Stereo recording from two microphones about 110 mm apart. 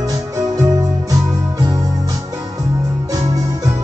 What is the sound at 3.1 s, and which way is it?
Music, 30° right (ahead or behind).